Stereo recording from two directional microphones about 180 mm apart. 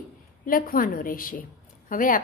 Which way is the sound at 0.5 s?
50° left (ahead or behind).